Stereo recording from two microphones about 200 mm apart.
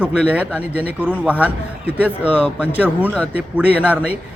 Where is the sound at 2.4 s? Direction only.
10° left (ahead or behind).